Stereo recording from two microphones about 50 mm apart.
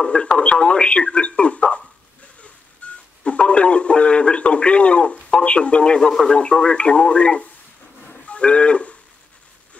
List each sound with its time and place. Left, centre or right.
0.0 s speech: centre
2.8 s telephone dialing: left
3.3 s speech: left
5.9 s speech: centre
6.3 s speech: left
8.3 s livestock: left